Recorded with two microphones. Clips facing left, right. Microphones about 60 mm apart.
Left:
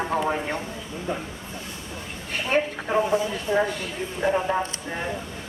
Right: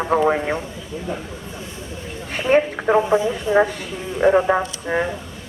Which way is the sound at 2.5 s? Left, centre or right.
Right.